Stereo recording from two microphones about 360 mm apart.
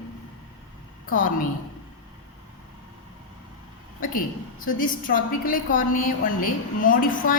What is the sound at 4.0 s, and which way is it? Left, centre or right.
A woman's voice, left.